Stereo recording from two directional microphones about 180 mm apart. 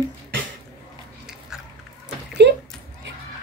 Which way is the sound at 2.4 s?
75° right (ahead or behind).